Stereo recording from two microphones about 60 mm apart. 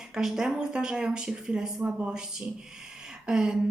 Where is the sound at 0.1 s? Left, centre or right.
Centre.